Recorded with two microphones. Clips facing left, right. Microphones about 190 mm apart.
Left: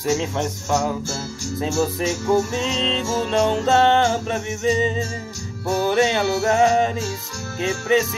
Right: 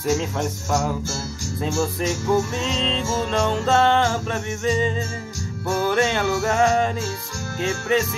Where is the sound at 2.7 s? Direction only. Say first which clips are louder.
Even; centre (ahead or behind).